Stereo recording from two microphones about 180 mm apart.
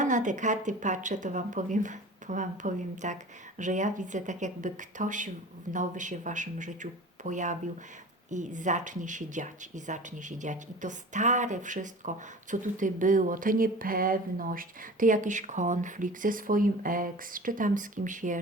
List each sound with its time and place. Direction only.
0.0 s speech: 45° right (ahead or behind)